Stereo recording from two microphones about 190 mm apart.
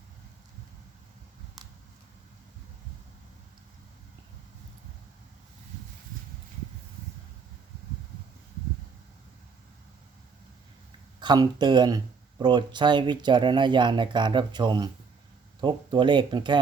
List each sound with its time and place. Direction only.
11.2 s speech: 25° right (ahead or behind)